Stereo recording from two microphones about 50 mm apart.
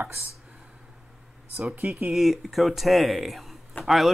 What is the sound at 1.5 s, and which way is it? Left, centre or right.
Speech, right.